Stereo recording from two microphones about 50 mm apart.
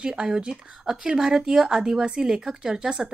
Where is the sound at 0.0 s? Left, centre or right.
Centre.